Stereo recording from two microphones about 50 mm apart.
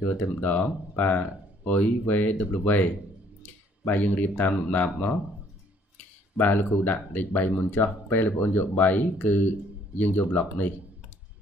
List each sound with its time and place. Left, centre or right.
0.1 s speech: left
3.9 s speech: left
6.3 s speech: left